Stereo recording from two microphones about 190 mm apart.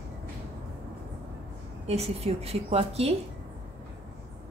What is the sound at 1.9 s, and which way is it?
A woman's voice, 35° right (ahead or behind).